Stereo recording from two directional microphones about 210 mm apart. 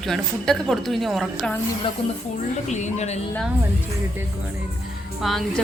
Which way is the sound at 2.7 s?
35° left (ahead or behind).